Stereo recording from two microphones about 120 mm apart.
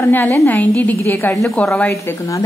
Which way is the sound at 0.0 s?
20° left (ahead or behind).